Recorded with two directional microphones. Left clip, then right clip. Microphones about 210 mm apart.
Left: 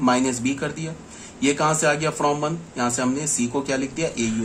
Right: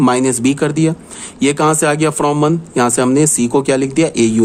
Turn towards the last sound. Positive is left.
turn(degrees=-55)  # may be behind; listen again after turning